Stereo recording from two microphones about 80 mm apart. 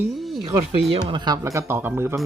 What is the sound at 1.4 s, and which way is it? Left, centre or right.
Speech, right.